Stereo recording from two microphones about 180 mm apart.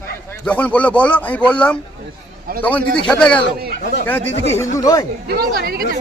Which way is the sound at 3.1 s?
5° left (ahead or behind).